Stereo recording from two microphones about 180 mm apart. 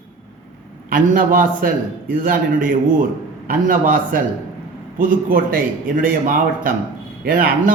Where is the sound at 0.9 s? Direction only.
50° right (ahead or behind).